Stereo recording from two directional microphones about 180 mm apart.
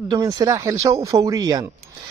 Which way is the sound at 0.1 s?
20° right (ahead or behind).